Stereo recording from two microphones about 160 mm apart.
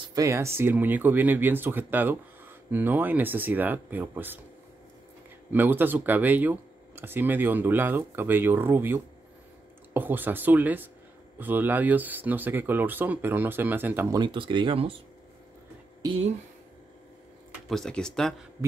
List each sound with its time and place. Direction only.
0.0 s speech: 20° right (ahead or behind)
5.5 s speech: 10° right (ahead or behind)
14.1 s speech: 30° right (ahead or behind)
17.6 s speech: 5° left (ahead or behind)